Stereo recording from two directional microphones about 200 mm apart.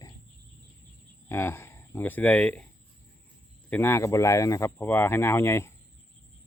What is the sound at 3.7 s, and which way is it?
Speech, 10° left (ahead or behind).